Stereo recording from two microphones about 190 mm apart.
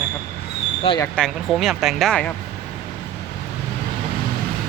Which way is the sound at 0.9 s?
10° left (ahead or behind).